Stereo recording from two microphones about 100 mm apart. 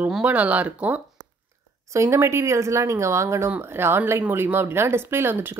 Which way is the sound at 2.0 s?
30° right (ahead or behind).